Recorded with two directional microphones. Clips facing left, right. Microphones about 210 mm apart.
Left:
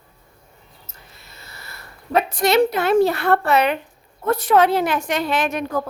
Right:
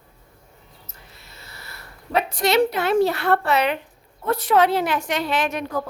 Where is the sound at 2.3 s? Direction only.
50° left (ahead or behind).